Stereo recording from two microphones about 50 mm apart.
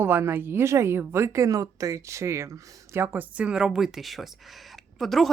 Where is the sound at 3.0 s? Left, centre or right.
Right.